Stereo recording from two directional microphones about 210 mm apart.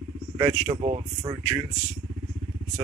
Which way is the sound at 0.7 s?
25° right (ahead or behind).